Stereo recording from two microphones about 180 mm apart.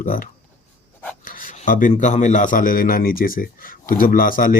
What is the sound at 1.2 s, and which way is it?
Rub, 50° left (ahead or behind).